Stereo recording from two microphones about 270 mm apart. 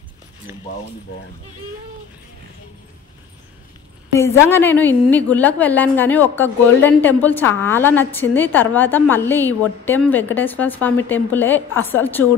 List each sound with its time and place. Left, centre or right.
4.1 s a woman's voice: centre